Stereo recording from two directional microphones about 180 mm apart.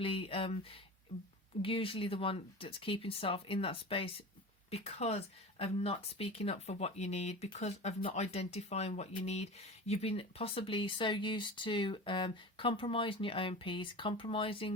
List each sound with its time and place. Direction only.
0.0 s speech: 30° left (ahead or behind)